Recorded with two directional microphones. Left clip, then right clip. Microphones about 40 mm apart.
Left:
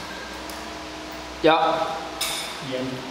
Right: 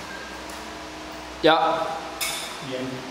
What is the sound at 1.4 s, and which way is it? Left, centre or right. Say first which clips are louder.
Speech: even; right.